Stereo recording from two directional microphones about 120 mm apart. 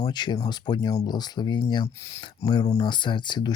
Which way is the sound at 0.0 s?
40° left (ahead or behind).